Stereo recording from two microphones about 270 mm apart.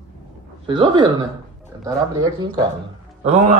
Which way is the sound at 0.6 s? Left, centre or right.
Centre.